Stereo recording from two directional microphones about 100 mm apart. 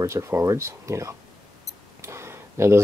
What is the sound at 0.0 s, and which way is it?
Speech, 30° right (ahead or behind).